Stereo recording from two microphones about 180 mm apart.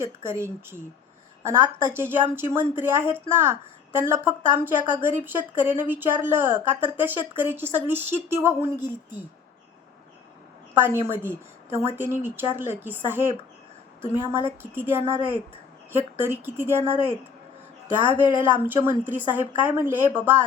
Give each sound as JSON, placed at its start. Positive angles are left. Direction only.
{"t": 0.0, "sound": "a woman's voice", "side_deg": -15}
{"t": 10.8, "sound": "a woman's voice", "side_deg": -15}
{"t": 18.0, "sound": "speech", "side_deg": 25}
{"t": 18.5, "sound": "a woman's voice", "side_deg": -10}